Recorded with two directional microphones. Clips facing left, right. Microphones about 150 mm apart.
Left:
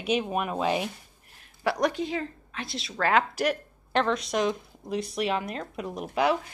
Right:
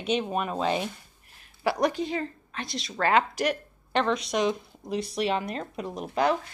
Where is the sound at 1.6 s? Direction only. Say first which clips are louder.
Right 1 dB; centre (ahead or behind).